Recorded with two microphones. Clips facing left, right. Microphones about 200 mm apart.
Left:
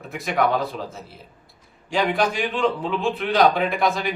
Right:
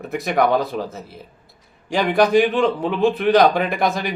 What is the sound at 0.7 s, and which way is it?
Speech, 55° right (ahead or behind).